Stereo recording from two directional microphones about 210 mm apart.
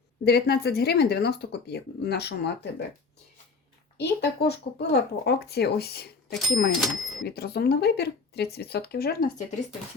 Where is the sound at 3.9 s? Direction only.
55° left (ahead or behind).